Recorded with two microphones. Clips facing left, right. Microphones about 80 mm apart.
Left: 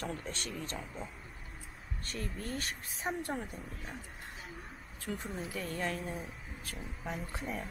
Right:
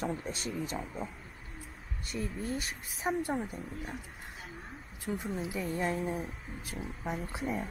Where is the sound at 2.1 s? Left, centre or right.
Centre.